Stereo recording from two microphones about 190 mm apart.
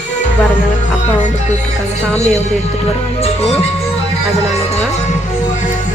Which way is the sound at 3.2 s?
30° left (ahead or behind).